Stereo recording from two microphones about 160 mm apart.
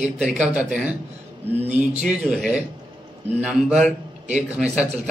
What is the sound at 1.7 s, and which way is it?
Speech, 45° right (ahead or behind).